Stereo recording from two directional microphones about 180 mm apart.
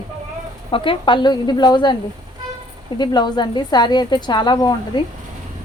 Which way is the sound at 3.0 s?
25° left (ahead or behind).